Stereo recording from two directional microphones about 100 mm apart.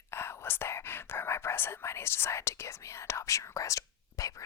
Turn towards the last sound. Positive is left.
turn(degrees=35)  # may be behind; listen again after turning